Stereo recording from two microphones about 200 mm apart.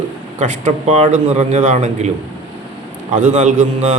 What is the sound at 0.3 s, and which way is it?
A man's voice, 35° right (ahead or behind).